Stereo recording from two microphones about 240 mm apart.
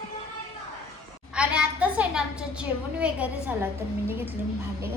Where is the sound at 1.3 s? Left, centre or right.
Centre.